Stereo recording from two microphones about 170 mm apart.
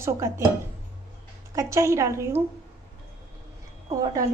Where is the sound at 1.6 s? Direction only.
15° right (ahead or behind).